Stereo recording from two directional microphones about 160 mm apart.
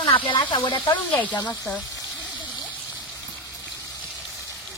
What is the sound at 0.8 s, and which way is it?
Speech, 10° left (ahead or behind).